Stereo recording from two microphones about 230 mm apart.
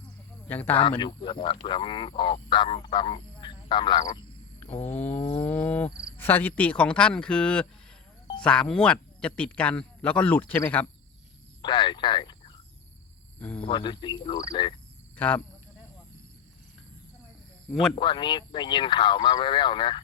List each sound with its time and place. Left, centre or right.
0.8 s speech: left
5.1 s a sound: centre
5.5 s speech: centre
11.6 s speech: centre
13.4 s speech: centre
13.7 s speech: left
15.1 s a sound: centre
17.9 s speech: left